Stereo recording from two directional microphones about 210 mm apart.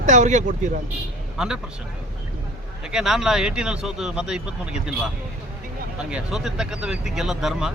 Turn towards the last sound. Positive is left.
turn(degrees=0)  # may be behind; listen again after turning